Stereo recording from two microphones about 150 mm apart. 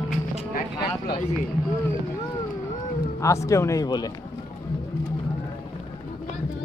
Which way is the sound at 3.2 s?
20° left (ahead or behind).